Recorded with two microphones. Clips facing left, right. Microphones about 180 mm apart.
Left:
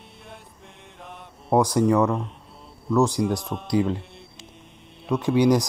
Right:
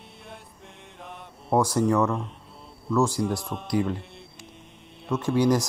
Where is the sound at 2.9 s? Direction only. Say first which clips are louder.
Left 3 dB; 15° left (ahead or behind).